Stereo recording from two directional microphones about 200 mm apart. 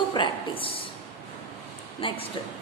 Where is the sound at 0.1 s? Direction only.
25° left (ahead or behind).